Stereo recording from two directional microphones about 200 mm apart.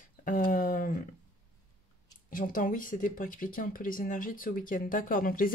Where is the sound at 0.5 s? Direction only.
40° left (ahead or behind).